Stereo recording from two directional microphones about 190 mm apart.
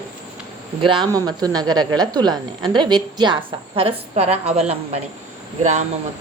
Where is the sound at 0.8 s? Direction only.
25° right (ahead or behind).